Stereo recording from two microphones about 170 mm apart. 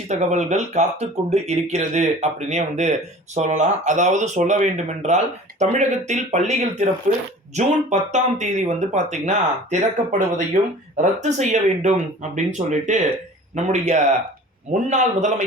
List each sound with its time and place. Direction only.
0.1 s speech: 45° right (ahead or behind)
7.1 s speech: 55° right (ahead or behind)
7.5 s speech: 45° right (ahead or behind)